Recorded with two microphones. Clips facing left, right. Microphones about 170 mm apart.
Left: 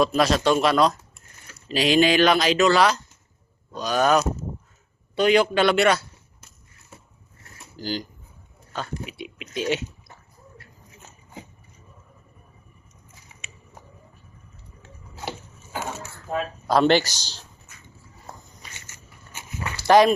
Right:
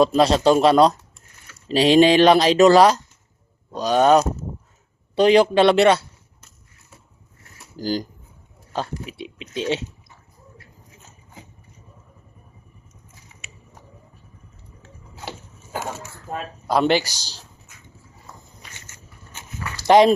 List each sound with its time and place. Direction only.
0.0 s speech: 30° right (ahead or behind)
7.8 s speech: 40° right (ahead or behind)
16.6 s a man's voice: 10° right (ahead or behind)
19.9 s speech: 25° right (ahead or behind)